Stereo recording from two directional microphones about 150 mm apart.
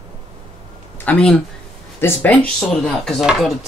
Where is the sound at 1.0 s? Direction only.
10° left (ahead or behind).